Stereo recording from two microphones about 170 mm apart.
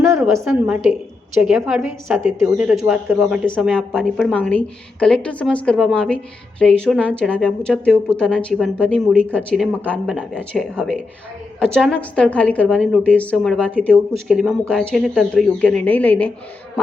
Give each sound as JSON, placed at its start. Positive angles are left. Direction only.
{"t": 0.6, "sound": "a woman's voice", "side_deg": -5}